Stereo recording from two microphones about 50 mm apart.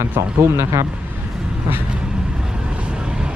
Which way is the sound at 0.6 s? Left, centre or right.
Right.